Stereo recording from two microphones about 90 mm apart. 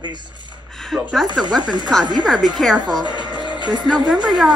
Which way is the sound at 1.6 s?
55° right (ahead or behind).